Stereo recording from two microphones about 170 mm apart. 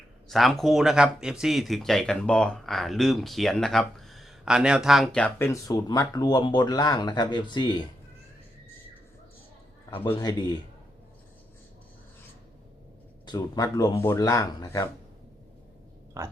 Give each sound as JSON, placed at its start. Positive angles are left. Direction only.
{"t": 0.3, "sound": "speech", "side_deg": 0}
{"t": 10.2, "sound": "speech", "side_deg": 25}
{"t": 13.2, "sound": "speech", "side_deg": 25}
{"t": 16.2, "sound": "speech", "side_deg": -15}